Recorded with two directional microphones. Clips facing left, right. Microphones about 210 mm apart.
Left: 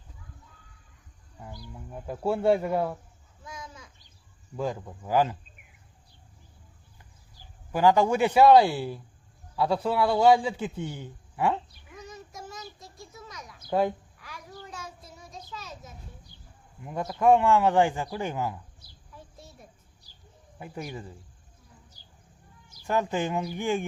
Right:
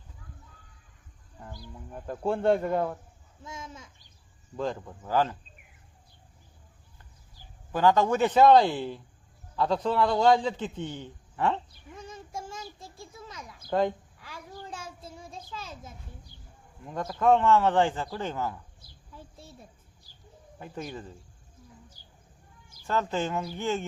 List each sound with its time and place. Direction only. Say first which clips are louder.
1.9 s a man's voice: left 1 dB; 5° left (ahead or behind)
3.4 s a child's voice: right 1 dB; 25° right (ahead or behind)
4.5 s a man's voice: left 1 dB; 10° left (ahead or behind)
7.7 s a man's voice: left 1 dB; 10° left (ahead or behind)
11.9 s child singing: right 2 dB; 30° right (ahead or behind)
13.7 s speech: left 1 dB; 10° left (ahead or behind)
14.2 s child singing: right 1 dB; 30° right (ahead or behind)
16.8 s a man's voice: left 2 dB; 10° left (ahead or behind)
20.6 s a man's voice: even; 10° left (ahead or behind)
22.8 s a man's voice: left 2 dB; 15° left (ahead or behind)